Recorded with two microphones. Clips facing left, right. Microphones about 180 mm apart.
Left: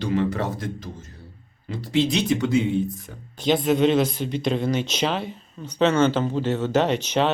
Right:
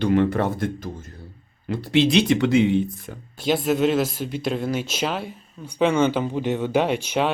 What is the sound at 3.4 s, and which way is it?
Speech, 5° right (ahead or behind).